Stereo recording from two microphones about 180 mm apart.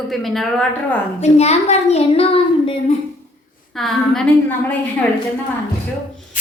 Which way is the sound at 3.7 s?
Centre (ahead or behind).